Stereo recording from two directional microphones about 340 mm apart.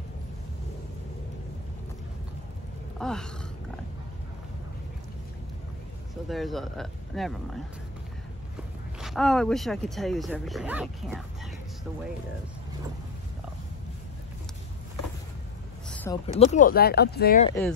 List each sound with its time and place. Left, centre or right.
3.0 s speech: centre
6.2 s speech: centre
9.0 s speech: centre
15.9 s a sound: centre
16.3 s speech: left
17.5 s speech: centre